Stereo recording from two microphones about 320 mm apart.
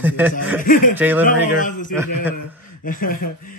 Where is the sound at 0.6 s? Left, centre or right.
Left.